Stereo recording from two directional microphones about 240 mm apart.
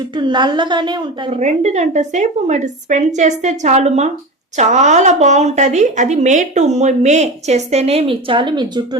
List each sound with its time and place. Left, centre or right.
0.2 s a woman's voice: centre